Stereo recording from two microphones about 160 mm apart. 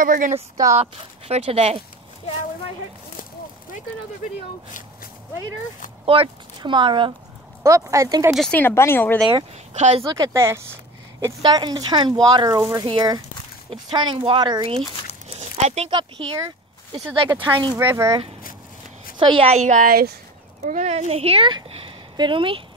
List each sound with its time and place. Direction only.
0.0 s speech: 55° right (ahead or behind)
0.7 s speech: 40° right (ahead or behind)
6.0 s speech: 30° right (ahead or behind)
7.6 s speech: 20° right (ahead or behind)
8.4 s speech: 10° left (ahead or behind)
9.8 s a woman's voice: 45° right (ahead or behind)
10.1 s speech: 20° right (ahead or behind); by 15.9 s 40° right (ahead or behind)
15.9 s speech: 30° right (ahead or behind)
17.7 s speech: 15° right (ahead or behind)
19.1 s a woman's voice: 30° right (ahead or behind); by 20.1 s 65° right (ahead or behind)
20.6 s speech: 45° right (ahead or behind)